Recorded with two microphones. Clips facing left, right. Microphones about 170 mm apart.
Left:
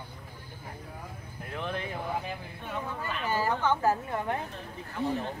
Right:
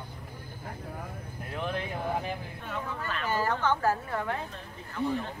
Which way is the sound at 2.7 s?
15° left (ahead or behind).